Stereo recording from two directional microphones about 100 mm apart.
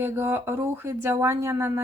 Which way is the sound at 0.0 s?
25° right (ahead or behind).